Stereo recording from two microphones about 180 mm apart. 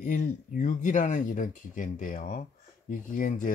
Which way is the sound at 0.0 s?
45° left (ahead or behind).